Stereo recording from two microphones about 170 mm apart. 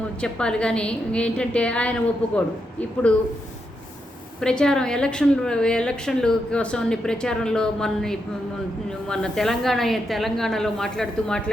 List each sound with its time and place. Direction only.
0.2 s a woman's voice: 5° left (ahead or behind)
4.4 s a woman's voice: 5° left (ahead or behind)